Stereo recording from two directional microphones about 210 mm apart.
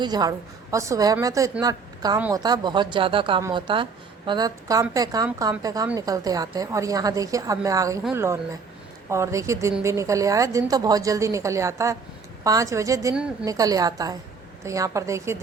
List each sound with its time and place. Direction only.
0.0 s a woman's voice: 20° right (ahead or behind)